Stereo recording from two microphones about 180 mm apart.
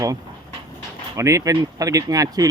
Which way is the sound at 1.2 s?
15° right (ahead or behind).